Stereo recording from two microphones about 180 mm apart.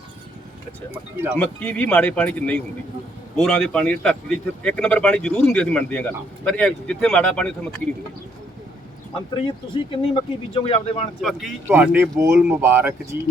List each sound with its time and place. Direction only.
1.4 s speech: 10° left (ahead or behind)
9.4 s speech: 30° left (ahead or behind)
11.2 s speech: centre (ahead or behind)